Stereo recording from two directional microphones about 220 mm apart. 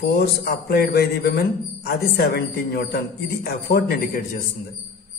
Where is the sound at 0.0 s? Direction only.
45° left (ahead or behind).